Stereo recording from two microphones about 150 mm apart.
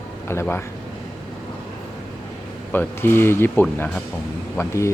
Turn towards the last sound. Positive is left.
turn(degrees=20)  # may be behind; listen again after turning